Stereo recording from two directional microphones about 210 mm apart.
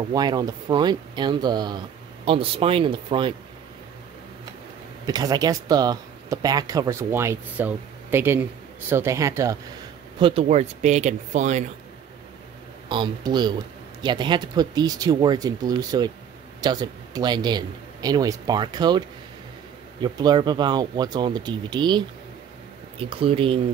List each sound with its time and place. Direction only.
0.1 s a man's voice: 20° right (ahead or behind)
5.0 s speech: 20° right (ahead or behind)
10.1 s speech: 25° right (ahead or behind)
12.8 s a man's voice: 25° right (ahead or behind)